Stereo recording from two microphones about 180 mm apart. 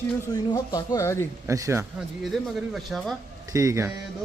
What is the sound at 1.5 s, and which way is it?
Speech, 15° right (ahead or behind).